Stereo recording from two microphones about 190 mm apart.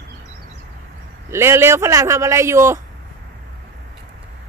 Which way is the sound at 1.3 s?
15° right (ahead or behind).